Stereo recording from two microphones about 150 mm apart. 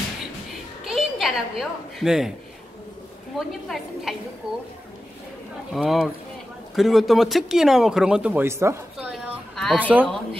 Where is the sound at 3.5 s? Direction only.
Centre (ahead or behind).